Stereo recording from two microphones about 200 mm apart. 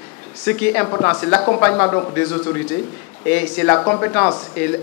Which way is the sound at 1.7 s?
20° left (ahead or behind).